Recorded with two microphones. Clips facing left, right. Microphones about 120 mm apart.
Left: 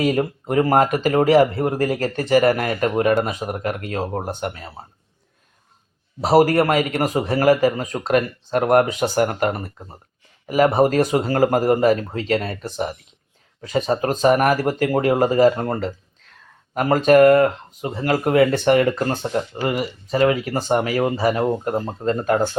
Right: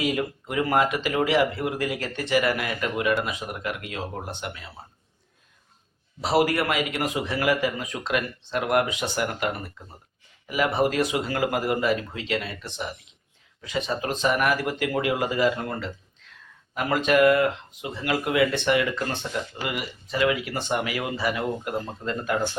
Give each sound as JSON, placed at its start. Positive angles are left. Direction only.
{"t": 0.0, "sound": "speech", "side_deg": 45}
{"t": 6.2, "sound": "speech", "side_deg": 45}
{"t": 16.2, "sound": "a sound", "side_deg": 40}
{"t": 16.7, "sound": "speech", "side_deg": 40}